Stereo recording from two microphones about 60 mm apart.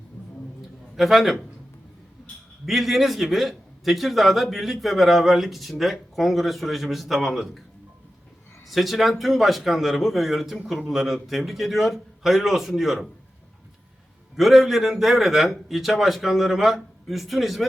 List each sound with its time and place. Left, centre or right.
0.9 s a man's voice: centre
2.6 s a man's voice: centre
8.6 s a man's voice: centre
14.3 s a man's voice: centre